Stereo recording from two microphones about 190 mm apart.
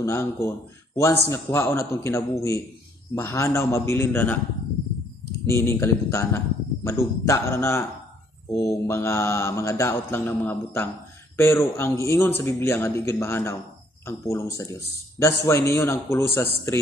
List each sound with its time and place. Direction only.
0.0 s speech: 15° left (ahead or behind)
5.5 s speech: 15° left (ahead or behind)